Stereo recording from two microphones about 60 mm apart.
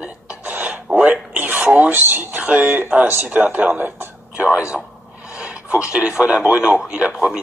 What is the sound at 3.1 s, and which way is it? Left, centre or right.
Speech, right.